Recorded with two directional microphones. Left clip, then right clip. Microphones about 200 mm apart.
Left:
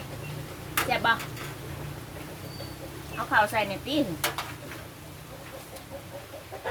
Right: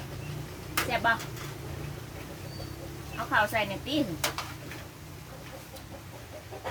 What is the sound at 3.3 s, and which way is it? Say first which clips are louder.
Speech: left 3 dB; 15° left (ahead or behind).